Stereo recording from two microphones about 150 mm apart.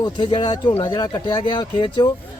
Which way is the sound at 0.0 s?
30° left (ahead or behind).